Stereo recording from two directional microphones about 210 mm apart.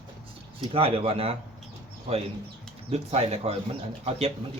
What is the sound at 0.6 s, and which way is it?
Speech, 25° right (ahead or behind).